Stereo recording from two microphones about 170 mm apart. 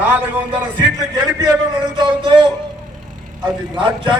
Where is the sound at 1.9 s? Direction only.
30° right (ahead or behind).